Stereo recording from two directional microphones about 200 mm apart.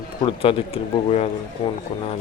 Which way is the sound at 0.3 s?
30° left (ahead or behind).